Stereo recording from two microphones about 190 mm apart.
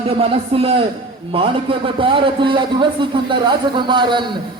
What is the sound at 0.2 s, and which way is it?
A man's voice, 30° right (ahead or behind).